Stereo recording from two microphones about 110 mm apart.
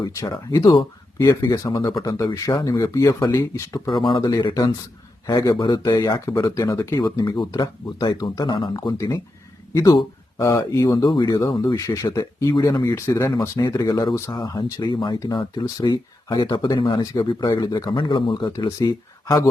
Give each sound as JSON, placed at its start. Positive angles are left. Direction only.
{"t": 0.0, "sound": "speech", "side_deg": 30}
{"t": 3.9, "sound": "speech", "side_deg": 45}
{"t": 5.2, "sound": "speech", "side_deg": 35}
{"t": 7.3, "sound": "speech", "side_deg": 45}
{"t": 17.9, "sound": "speech", "side_deg": 50}